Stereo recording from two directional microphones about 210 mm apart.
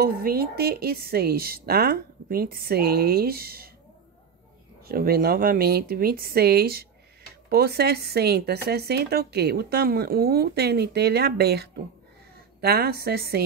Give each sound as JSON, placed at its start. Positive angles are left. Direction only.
{"t": 0.0, "sound": "speech", "side_deg": -45}
{"t": 4.8, "sound": "speech", "side_deg": -45}